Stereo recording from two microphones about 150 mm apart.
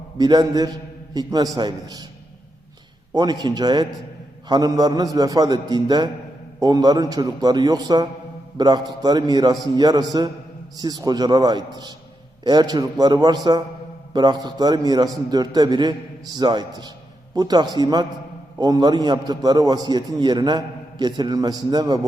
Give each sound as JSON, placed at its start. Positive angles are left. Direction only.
{"t": 0.2, "sound": "a man's voice", "side_deg": -25}
{"t": 3.2, "sound": "a man's voice", "side_deg": -25}